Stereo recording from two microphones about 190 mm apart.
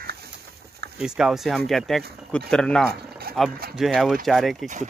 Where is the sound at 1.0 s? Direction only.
5° right (ahead or behind).